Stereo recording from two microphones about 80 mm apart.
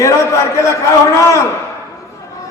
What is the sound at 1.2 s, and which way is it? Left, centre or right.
Speech, left.